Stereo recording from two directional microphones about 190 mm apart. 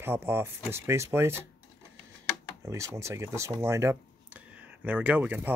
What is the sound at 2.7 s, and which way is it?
Speech, 15° right (ahead or behind).